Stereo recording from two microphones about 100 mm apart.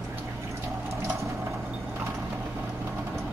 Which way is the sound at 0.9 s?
30° right (ahead or behind).